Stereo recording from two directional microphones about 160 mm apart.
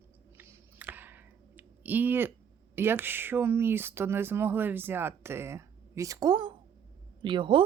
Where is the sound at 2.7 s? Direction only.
15° right (ahead or behind).